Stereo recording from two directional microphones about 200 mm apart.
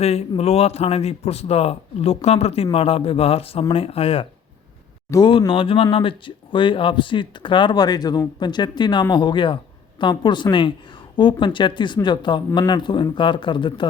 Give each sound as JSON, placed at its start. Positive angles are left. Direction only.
{"t": 0.0, "sound": "speech", "side_deg": 30}